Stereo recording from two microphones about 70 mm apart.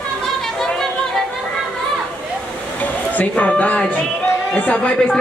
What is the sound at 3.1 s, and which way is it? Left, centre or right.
Speech, centre.